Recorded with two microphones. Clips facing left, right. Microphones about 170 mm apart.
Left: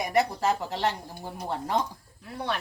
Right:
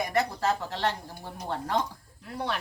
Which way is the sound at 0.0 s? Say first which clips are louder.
Left 2 dB; 15° left (ahead or behind).